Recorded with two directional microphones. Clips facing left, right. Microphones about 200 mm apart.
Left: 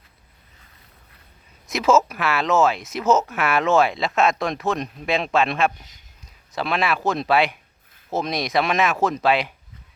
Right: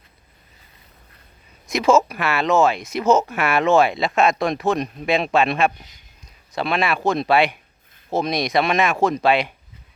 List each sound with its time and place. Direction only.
1.6 s speech: 5° left (ahead or behind)